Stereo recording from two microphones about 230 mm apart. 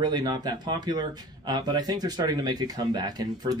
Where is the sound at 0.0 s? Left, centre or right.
Centre.